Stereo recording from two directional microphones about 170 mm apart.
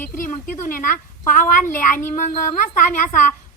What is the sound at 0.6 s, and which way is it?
A woman's voice, 55° left (ahead or behind).